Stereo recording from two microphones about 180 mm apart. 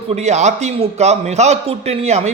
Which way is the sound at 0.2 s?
40° right (ahead or behind).